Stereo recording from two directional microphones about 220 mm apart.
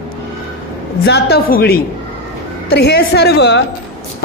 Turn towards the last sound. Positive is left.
turn(degrees=50)  # may be behind; listen again after turning